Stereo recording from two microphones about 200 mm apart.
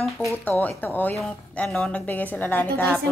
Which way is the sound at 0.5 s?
10° left (ahead or behind).